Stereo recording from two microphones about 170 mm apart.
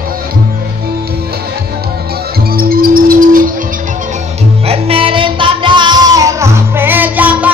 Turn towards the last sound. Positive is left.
turn(degrees=-10)  # may be behind; listen again after turning